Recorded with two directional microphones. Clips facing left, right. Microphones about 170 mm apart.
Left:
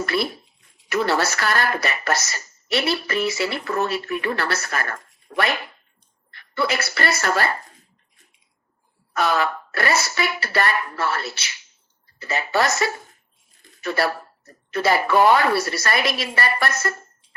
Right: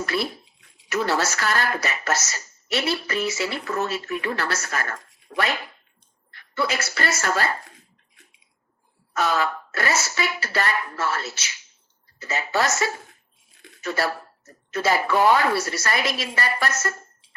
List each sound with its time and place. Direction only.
0.0 s speech: 65° left (ahead or behind)
6.5 s speech: 60° left (ahead or behind)
9.1 s speech: 65° left (ahead or behind)
13.5 s a sound: 70° right (ahead or behind)
13.8 s speech: 60° left (ahead or behind)